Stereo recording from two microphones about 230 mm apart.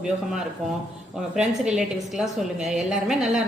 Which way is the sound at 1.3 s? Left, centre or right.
Centre.